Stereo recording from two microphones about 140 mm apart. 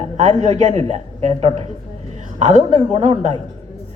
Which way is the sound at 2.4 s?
60° right (ahead or behind).